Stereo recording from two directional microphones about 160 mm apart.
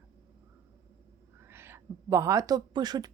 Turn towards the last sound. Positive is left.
turn(degrees=-25)  # may be behind; listen again after turning